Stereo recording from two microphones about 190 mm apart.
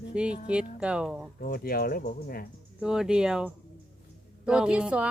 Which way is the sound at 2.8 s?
5° right (ahead or behind).